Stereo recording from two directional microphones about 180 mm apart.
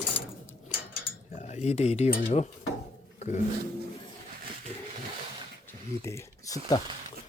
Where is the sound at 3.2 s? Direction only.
40° left (ahead or behind).